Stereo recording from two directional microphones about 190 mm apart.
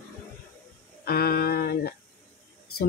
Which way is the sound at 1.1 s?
55° left (ahead or behind).